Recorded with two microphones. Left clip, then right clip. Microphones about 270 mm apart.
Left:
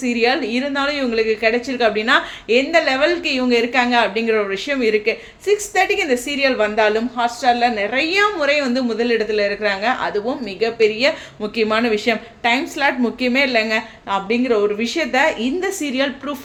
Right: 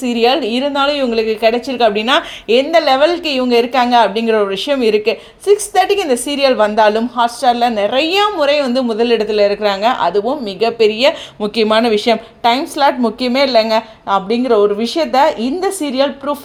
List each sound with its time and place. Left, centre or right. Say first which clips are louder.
0.2 s a woman's voice: right 6 dB; right